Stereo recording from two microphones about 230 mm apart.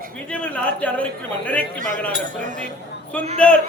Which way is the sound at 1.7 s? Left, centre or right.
Right.